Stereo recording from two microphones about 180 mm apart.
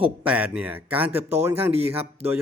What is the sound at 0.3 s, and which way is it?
Speech, 5° right (ahead or behind).